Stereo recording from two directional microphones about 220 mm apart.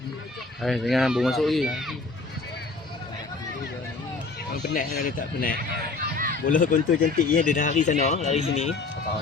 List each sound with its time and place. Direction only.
0.6 s speech: centre (ahead or behind)
4.7 s speech: 40° left (ahead or behind)
5.5 s a sound: 45° right (ahead or behind)
6.4 s speech: 40° left (ahead or behind)